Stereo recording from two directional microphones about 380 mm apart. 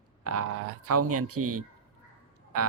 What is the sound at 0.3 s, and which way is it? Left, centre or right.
A woman's voice, right.